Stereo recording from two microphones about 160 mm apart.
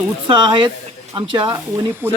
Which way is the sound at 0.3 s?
30° right (ahead or behind).